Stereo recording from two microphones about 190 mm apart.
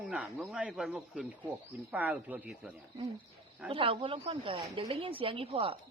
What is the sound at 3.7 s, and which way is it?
A woman's voice, 30° right (ahead or behind).